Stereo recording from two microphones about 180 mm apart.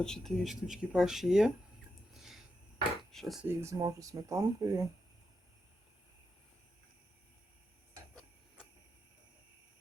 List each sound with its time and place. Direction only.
0.0 s speech: 5° left (ahead or behind)
2.1 s a sound: centre (ahead or behind)
3.0 s speech: centre (ahead or behind)
3.4 s speech: 15° right (ahead or behind)